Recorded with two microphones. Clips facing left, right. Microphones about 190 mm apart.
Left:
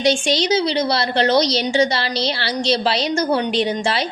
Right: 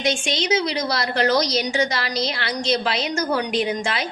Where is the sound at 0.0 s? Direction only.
35° left (ahead or behind).